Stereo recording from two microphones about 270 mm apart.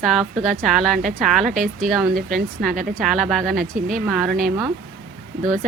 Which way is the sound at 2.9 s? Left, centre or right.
Centre.